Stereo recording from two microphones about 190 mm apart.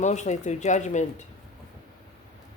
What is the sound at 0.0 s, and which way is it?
A woman's voice, 40° left (ahead or behind).